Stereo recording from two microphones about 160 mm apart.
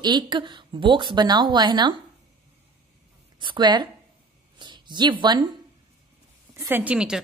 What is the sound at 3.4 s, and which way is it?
A woman's voice, 30° right (ahead or behind).